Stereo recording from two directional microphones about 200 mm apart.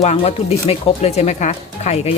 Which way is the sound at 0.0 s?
35° left (ahead or behind).